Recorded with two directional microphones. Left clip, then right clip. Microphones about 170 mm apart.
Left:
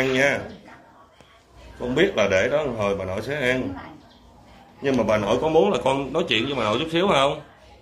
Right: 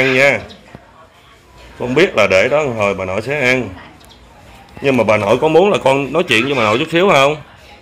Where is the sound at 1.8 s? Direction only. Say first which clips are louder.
Right 8 dB; 25° right (ahead or behind).